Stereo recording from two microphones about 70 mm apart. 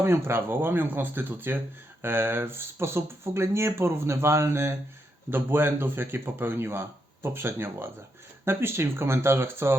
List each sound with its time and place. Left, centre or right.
0.0 s speech: right